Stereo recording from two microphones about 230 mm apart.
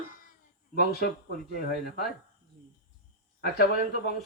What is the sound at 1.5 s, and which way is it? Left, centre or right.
Speech, left.